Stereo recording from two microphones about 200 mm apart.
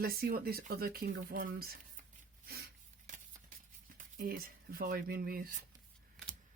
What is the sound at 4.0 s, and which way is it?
Speech, 45° right (ahead or behind).